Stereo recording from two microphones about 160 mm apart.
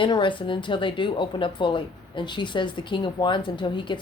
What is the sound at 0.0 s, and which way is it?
Speech, 30° left (ahead or behind).